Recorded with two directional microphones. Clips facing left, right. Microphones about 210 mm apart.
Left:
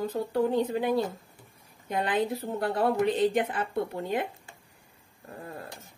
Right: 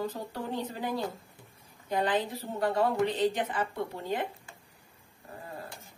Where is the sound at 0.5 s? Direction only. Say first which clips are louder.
Left 7 dB; 60° left (ahead or behind).